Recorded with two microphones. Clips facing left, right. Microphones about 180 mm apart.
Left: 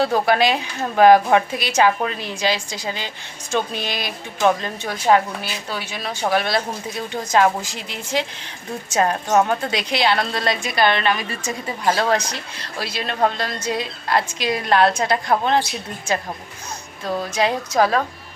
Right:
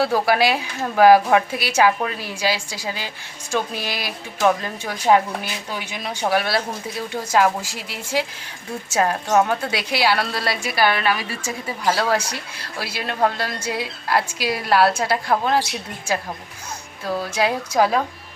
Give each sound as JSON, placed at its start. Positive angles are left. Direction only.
{"t": 0.0, "sound": "a woman's voice", "side_deg": -5}